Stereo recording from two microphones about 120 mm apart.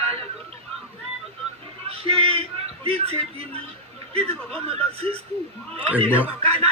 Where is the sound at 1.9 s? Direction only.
55° right (ahead or behind).